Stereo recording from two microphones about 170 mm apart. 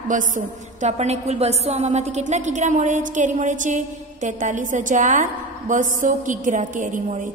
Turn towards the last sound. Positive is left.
turn(degrees=-45)  # may be behind; listen again after turning